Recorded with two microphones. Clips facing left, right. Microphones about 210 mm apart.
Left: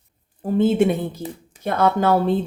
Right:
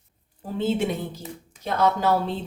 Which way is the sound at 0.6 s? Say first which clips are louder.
Left 7 dB; 55° left (ahead or behind).